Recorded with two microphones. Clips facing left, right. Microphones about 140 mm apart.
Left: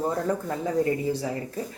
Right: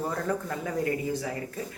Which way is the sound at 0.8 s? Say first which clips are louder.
Left 3 dB; 30° left (ahead or behind).